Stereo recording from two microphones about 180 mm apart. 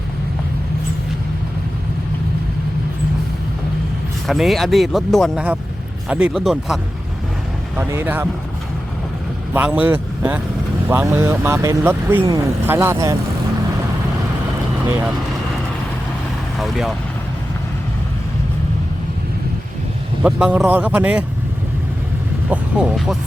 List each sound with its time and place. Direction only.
4.3 s speech: centre (ahead or behind)
7.8 s speech: 10° right (ahead or behind)
9.5 s speech: 10° right (ahead or behind)
14.8 s speech: 10° right (ahead or behind)
16.6 s speech: centre (ahead or behind)
20.2 s speech: 5° right (ahead or behind)
22.4 s speech: 5° right (ahead or behind)